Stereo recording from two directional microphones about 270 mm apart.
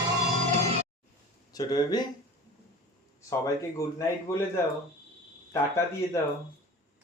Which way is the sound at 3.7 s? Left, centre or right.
Centre.